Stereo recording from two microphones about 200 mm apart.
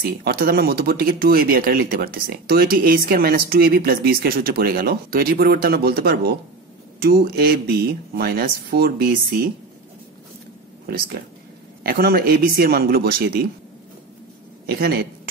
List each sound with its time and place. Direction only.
0.2 s speech: 50° right (ahead or behind)
11.8 s speech: 50° right (ahead or behind)
14.7 s speech: 55° right (ahead or behind)